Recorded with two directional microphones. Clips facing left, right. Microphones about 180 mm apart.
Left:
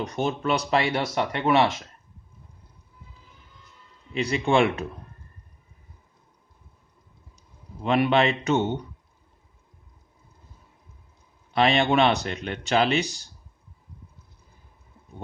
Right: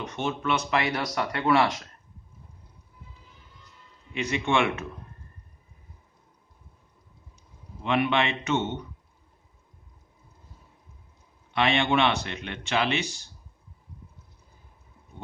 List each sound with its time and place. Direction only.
0.0 s speech: 35° left (ahead or behind)
4.1 s speech: 35° left (ahead or behind)
7.8 s speech: 35° left (ahead or behind)
11.5 s speech: 35° left (ahead or behind)